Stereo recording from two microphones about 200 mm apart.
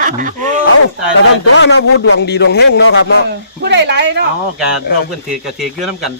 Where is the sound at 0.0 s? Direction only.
40° right (ahead or behind).